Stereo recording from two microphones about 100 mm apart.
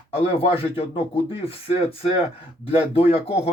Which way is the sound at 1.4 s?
75° left (ahead or behind).